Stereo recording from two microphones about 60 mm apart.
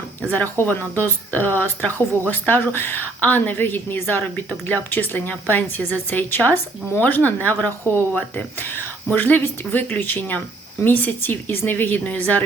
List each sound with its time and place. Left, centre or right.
0.3 s speech: left
4.2 s a woman's voice: left